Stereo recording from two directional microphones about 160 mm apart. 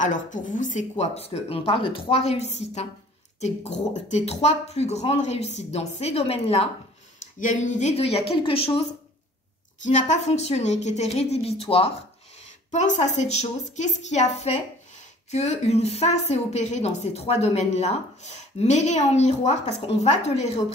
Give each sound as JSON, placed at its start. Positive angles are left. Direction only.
{"t": 0.0, "sound": "a woman's voice", "side_deg": 55}
{"t": 7.3, "sound": "speech", "side_deg": 50}
{"t": 9.8, "sound": "a woman's voice", "side_deg": 50}